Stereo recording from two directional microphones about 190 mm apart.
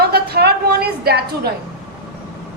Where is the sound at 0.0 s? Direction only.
55° right (ahead or behind).